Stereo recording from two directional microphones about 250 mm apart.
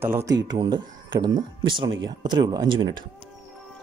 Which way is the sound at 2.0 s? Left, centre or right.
Centre.